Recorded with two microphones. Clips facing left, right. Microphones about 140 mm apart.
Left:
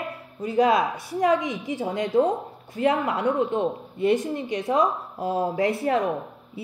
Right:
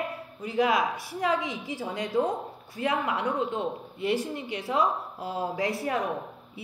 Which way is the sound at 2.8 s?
35° left (ahead or behind).